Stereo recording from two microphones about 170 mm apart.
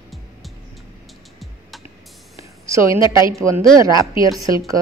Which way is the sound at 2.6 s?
20° right (ahead or behind).